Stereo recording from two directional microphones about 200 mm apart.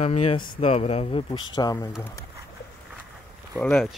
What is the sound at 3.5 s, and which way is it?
Speech, 5° left (ahead or behind).